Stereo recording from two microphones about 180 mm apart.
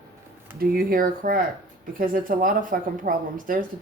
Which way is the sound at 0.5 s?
55° right (ahead or behind).